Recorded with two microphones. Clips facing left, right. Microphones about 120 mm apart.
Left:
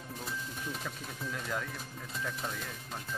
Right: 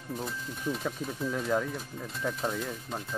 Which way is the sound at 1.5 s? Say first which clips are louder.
Right 9 dB; 35° right (ahead or behind).